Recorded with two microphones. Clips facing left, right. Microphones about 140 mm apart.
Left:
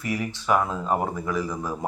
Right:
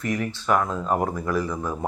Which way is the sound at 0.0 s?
10° left (ahead or behind).